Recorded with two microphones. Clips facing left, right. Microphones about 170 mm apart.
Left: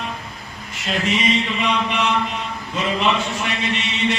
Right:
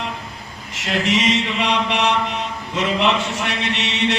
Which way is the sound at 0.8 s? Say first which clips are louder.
Right 2 dB; 85° right.